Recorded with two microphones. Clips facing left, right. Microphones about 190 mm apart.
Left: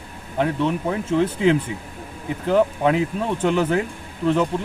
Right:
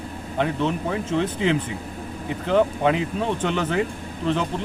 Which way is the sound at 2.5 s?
5° left (ahead or behind).